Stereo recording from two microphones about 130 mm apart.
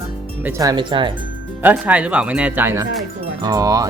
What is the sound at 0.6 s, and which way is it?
Speech, 35° right (ahead or behind).